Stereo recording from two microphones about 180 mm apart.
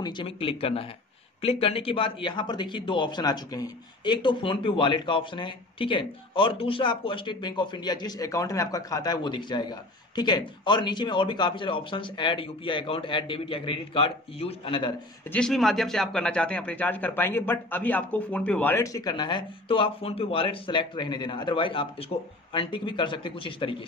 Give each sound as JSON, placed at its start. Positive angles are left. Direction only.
{"t": 0.0, "sound": "speech", "side_deg": 30}
{"t": 15.3, "sound": "a man's voice", "side_deg": 0}